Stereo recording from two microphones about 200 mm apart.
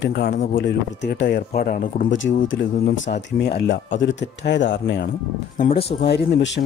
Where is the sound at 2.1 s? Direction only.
70° left (ahead or behind).